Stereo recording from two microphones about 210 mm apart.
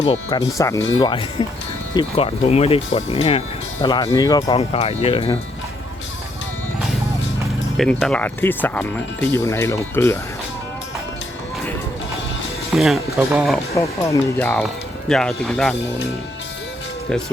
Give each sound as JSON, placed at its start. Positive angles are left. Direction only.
{"t": 0.0, "sound": "speech", "side_deg": 30}
{"t": 0.5, "sound": "speech", "side_deg": 15}
{"t": 1.0, "sound": "speech", "side_deg": 25}
{"t": 7.8, "sound": "speech", "side_deg": 0}
{"t": 12.7, "sound": "speech", "side_deg": 0}
{"t": 13.7, "sound": "speech", "side_deg": 15}